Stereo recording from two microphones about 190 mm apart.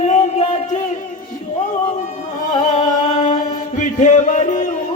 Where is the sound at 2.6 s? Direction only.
40° left (ahead or behind).